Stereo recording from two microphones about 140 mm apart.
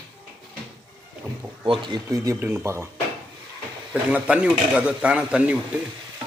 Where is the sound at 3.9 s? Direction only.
10° right (ahead or behind).